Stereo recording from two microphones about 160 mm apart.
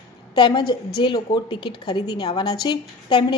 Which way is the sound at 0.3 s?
30° left (ahead or behind).